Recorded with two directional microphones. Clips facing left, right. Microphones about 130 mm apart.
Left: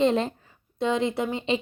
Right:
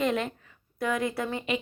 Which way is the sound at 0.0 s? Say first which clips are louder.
Left 5 dB; 30° left (ahead or behind).